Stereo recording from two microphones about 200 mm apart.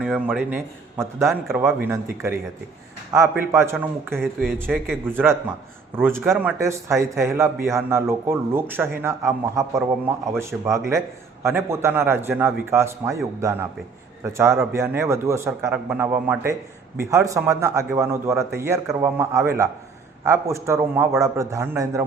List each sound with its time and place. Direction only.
0.0 s a man's voice: 5° right (ahead or behind)
1.3 s speech: centre (ahead or behind)
3.1 s a man's voice: 15° right (ahead or behind)
6.0 s a man's voice: 10° right (ahead or behind)